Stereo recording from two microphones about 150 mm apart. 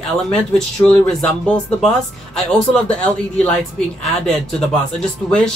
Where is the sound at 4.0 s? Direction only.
5° left (ahead or behind).